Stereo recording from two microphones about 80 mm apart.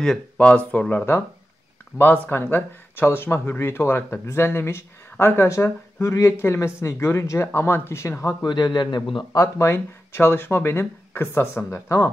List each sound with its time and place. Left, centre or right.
0.0 s speech: centre
2.2 s speech: left
8.4 s a man's voice: left
9.3 s speech: left
9.7 s speech: left